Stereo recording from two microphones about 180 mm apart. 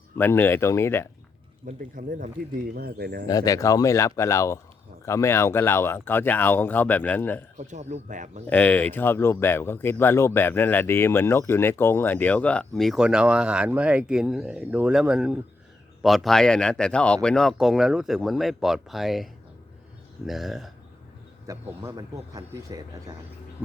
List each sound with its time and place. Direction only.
0.2 s speech: 10° left (ahead or behind)
1.6 s speech: 50° right (ahead or behind)
3.2 s speech: 20° left (ahead or behind)
7.6 s speech: 40° right (ahead or behind)
8.4 s speech: 10° left (ahead or behind)
21.4 s speech: 15° right (ahead or behind)
23.6 s a sound: 10° left (ahead or behind)